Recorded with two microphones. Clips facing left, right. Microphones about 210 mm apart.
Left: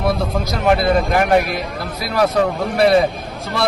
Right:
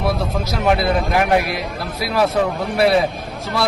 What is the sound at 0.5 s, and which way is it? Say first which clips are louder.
Speech: left 2 dB; centre (ahead or behind).